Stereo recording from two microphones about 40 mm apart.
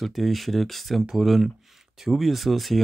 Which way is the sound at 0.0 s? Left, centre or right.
Centre.